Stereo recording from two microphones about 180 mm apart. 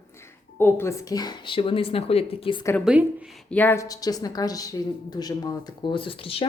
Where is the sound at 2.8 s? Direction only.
5° right (ahead or behind).